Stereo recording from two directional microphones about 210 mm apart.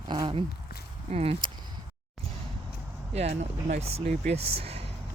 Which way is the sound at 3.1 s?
30° right (ahead or behind).